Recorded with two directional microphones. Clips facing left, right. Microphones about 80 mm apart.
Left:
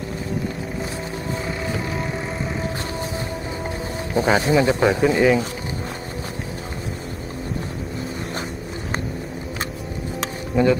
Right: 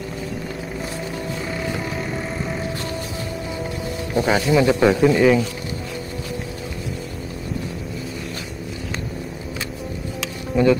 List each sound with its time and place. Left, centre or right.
4.1 s speech: left; by 5.4 s centre
10.5 s speech: centre